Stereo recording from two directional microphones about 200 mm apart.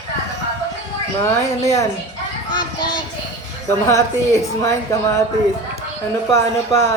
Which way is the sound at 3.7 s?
15° left (ahead or behind).